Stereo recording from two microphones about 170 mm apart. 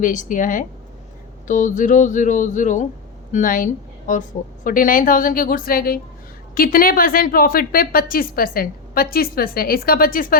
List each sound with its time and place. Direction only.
0.0 s a woman's voice: 50° left (ahead or behind)